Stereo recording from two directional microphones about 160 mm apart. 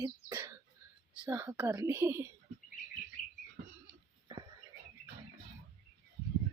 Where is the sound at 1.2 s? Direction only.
15° right (ahead or behind).